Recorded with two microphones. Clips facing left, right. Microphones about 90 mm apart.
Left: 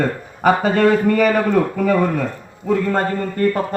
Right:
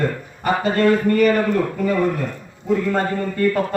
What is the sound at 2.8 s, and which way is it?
Speech, 40° left (ahead or behind).